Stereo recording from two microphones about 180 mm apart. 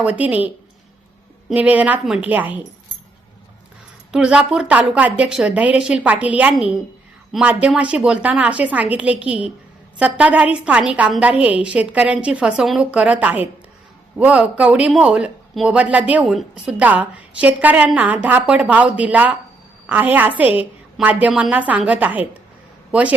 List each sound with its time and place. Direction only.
0.0 s speech: 5° right (ahead or behind)
4.1 s a woman's voice: 5° right (ahead or behind)